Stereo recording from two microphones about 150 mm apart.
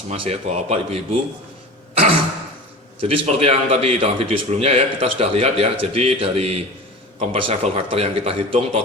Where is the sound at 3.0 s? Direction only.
40° right (ahead or behind).